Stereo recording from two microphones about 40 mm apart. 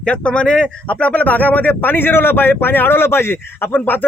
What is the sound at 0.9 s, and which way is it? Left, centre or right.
Speech, left.